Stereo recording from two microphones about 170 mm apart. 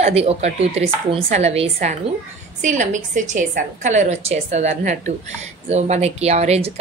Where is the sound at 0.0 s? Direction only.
35° right (ahead or behind).